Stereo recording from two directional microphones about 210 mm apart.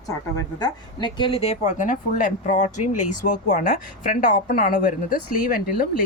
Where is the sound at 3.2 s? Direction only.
40° left (ahead or behind).